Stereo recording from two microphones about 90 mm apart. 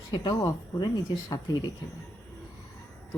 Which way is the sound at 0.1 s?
50° left (ahead or behind).